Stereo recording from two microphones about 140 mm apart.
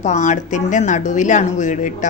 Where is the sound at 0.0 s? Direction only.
60° left (ahead or behind).